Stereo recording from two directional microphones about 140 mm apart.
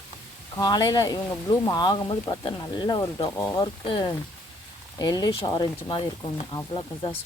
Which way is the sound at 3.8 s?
40° left (ahead or behind).